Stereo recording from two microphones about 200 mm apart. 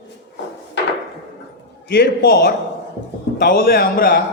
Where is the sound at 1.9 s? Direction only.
55° left (ahead or behind).